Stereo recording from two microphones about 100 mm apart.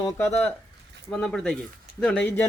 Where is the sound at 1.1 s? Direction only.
5° left (ahead or behind).